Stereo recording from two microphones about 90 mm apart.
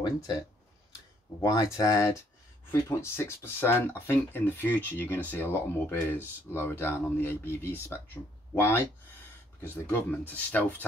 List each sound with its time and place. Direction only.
1.4 s speech: 40° left (ahead or behind); by 10.9 s 20° left (ahead or behind)